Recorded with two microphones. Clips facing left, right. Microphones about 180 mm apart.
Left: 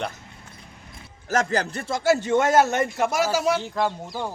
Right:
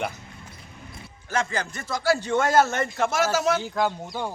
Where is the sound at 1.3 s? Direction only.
40° left (ahead or behind).